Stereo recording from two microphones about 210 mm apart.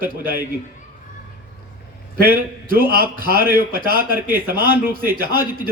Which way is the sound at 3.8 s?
45° right (ahead or behind).